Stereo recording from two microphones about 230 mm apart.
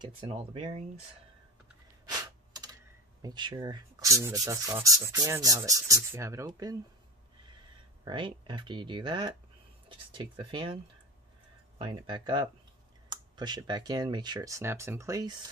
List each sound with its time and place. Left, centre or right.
0.0 s speech: right
2.0 s gasp: centre
3.2 s speech: centre
8.0 s speech: centre
11.8 s speech: centre